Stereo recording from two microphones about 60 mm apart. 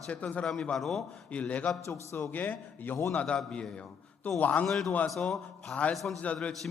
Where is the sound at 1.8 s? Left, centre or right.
Left.